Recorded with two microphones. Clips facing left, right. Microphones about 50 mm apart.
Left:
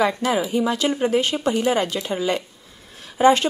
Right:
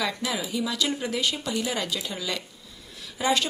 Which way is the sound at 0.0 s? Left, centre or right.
Left.